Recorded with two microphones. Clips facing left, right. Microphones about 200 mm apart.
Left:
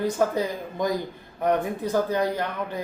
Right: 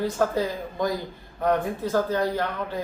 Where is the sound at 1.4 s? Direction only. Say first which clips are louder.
Even; 20° left (ahead or behind).